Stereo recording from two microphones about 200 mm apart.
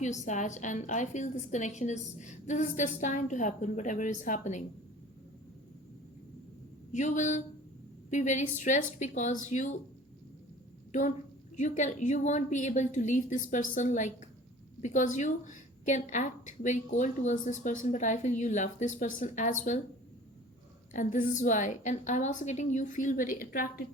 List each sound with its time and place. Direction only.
0.0 s a woman's voice: 35° left (ahead or behind)
6.9 s a woman's voice: 35° left (ahead or behind)
11.5 s a woman's voice: 35° left (ahead or behind)
20.9 s a woman's voice: 40° left (ahead or behind)